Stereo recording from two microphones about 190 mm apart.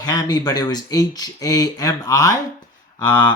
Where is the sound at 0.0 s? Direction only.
20° left (ahead or behind).